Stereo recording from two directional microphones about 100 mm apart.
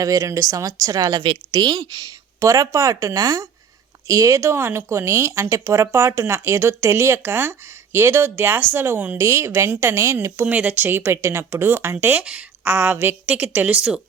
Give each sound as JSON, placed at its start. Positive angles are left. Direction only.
{"t": 0.0, "sound": "a woman's voice", "side_deg": -35}
{"t": 10.4, "sound": "a woman's voice", "side_deg": -15}